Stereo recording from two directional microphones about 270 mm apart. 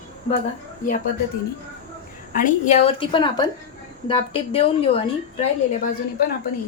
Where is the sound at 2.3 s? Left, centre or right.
Left.